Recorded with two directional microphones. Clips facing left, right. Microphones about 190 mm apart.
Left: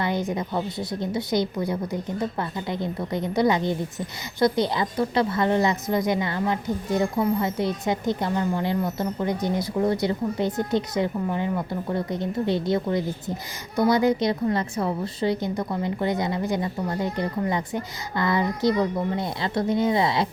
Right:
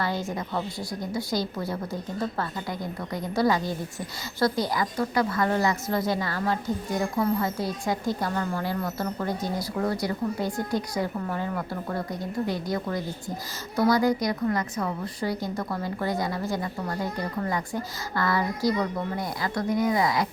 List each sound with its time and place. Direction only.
0.0 s speech: 20° left (ahead or behind)